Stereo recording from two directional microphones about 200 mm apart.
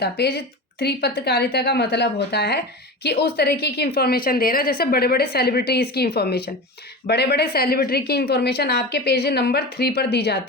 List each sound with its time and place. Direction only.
0.0 s speech: 55° left (ahead or behind)